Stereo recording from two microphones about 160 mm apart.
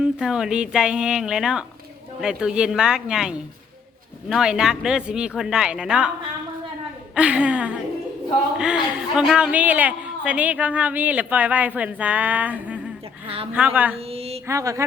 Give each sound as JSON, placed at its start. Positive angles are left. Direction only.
{"t": 0.0, "sound": "a woman's voice", "side_deg": -5}
{"t": 7.2, "sound": "a woman's voice", "side_deg": -5}
{"t": 13.2, "sound": "a woman's voice", "side_deg": -35}
{"t": 13.5, "sound": "a woman's voice", "side_deg": -10}
{"t": 13.9, "sound": "speech", "side_deg": -40}
{"t": 14.4, "sound": "a sound", "side_deg": -20}